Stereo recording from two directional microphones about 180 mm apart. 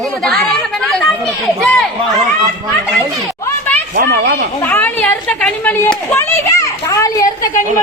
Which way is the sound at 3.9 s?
60° right (ahead or behind).